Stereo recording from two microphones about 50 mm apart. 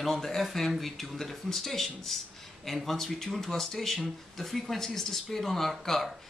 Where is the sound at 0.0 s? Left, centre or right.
Centre.